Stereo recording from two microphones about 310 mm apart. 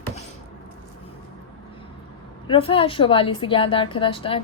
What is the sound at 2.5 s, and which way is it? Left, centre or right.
A woman's voice, centre.